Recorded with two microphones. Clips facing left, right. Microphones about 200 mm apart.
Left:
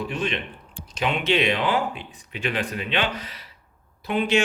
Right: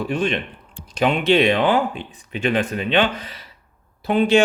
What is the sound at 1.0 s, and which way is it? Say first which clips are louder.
Speech: right 6 dB; 45° right (ahead or behind).